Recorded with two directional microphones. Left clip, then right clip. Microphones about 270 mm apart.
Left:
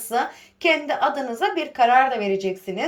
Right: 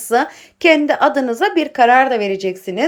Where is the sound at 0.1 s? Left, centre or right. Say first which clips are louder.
Right 7 dB; centre.